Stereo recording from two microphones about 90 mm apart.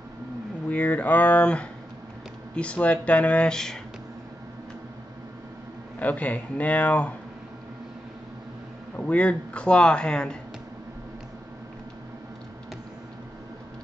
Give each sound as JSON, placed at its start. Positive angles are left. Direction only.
{"t": 0.7, "sound": "speech", "side_deg": 20}
{"t": 5.9, "sound": "speech", "side_deg": 15}
{"t": 8.9, "sound": "speech", "side_deg": 15}